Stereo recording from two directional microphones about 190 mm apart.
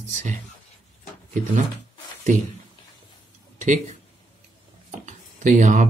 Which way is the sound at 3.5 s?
40° right (ahead or behind).